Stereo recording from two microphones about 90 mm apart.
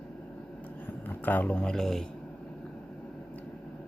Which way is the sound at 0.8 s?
20° left (ahead or behind).